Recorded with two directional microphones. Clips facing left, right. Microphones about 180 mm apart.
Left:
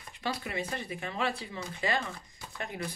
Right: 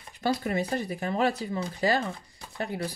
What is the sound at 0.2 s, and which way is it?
Speech, 40° right (ahead or behind).